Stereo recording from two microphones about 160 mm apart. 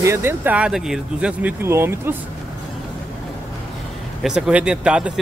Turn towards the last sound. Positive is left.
turn(degrees=-5)  # may be behind; listen again after turning